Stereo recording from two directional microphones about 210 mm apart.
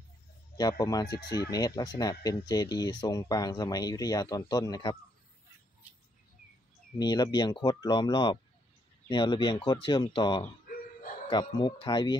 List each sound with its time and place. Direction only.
0.6 s speech: 15° left (ahead or behind)
7.0 s speech: 20° left (ahead or behind)